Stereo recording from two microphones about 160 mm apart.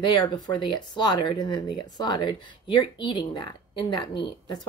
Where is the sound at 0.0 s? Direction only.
30° left (ahead or behind).